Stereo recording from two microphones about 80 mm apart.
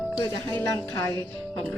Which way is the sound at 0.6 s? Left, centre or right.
Left.